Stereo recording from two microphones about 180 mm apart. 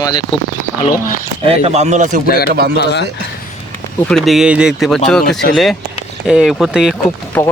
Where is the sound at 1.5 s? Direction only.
35° right (ahead or behind).